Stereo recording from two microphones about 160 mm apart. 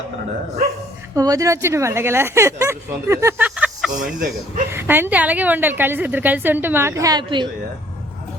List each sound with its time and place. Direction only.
1.1 s speech: 20° right (ahead or behind); by 4.1 s 5° right (ahead or behind)
4.7 s speech: 15° right (ahead or behind); by 7.5 s 30° right (ahead or behind)